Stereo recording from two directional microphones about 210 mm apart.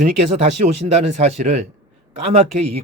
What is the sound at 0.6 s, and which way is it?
Speech, 30° right (ahead or behind).